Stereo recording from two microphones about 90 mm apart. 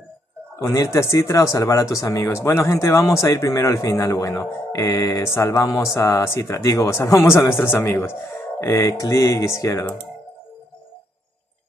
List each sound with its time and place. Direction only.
0.7 s speech: 40° left (ahead or behind)